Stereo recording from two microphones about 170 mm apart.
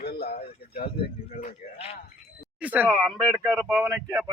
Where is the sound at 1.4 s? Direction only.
40° left (ahead or behind).